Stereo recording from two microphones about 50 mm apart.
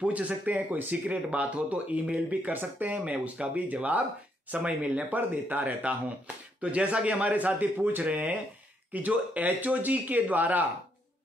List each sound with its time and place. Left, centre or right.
0.0 s speech: right